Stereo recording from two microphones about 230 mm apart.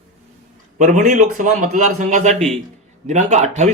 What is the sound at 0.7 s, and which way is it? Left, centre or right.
Speech, right.